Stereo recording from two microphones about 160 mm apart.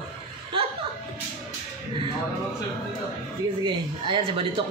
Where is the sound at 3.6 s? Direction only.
35° right (ahead or behind).